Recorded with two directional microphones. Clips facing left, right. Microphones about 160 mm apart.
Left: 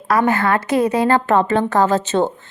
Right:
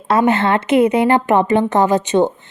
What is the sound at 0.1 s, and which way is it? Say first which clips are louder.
A woman's voice: right 2 dB; 20° right (ahead or behind).